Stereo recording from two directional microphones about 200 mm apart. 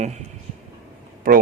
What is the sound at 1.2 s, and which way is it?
Speech, 45° right (ahead or behind).